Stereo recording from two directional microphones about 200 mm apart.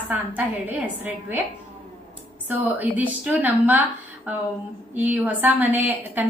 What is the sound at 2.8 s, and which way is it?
A woman's voice, 10° right (ahead or behind).